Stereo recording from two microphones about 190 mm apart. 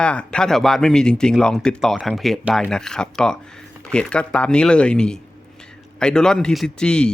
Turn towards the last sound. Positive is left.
turn(degrees=5)  # may be behind; listen again after turning